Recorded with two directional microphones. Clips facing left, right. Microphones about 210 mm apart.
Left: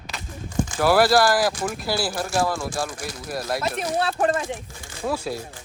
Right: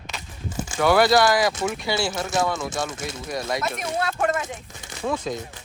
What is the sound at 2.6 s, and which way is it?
Speech, 20° right (ahead or behind).